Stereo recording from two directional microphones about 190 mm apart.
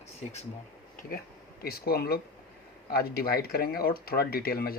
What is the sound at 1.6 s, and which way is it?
Speech, 55° left (ahead or behind).